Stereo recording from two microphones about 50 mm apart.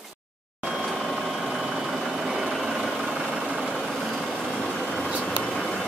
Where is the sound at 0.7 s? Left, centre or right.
Centre.